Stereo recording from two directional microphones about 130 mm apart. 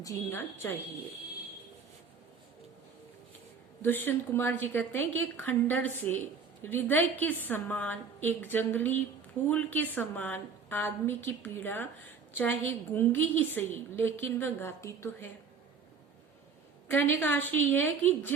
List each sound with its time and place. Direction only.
0.0 s a woman's voice: 20° left (ahead or behind)
3.8 s a woman's voice: 15° left (ahead or behind)
16.9 s a woman's voice: 15° left (ahead or behind)